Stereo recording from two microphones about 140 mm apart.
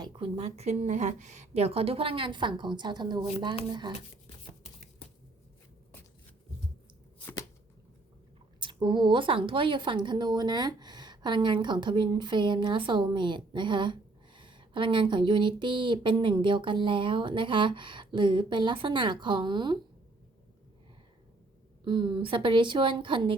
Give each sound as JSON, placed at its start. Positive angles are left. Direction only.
{"t": 0.2, "sound": "a woman's voice", "side_deg": -45}
{"t": 8.6, "sound": "a woman's voice", "side_deg": -35}
{"t": 21.8, "sound": "a woman's voice", "side_deg": -35}